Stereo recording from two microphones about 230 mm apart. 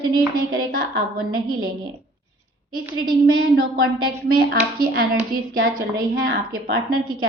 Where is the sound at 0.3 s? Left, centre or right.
Right.